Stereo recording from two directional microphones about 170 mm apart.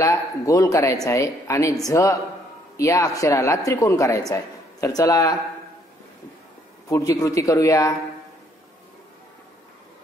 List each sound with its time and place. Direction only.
0.0 s a man's voice: 20° left (ahead or behind)
6.9 s a man's voice: 20° left (ahead or behind)